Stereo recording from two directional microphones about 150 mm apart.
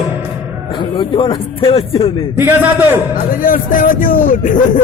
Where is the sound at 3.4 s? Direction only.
65° left (ahead or behind).